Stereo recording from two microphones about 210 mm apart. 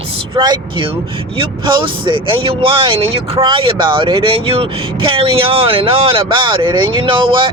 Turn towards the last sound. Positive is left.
turn(degrees=-25)  # may be behind; listen again after turning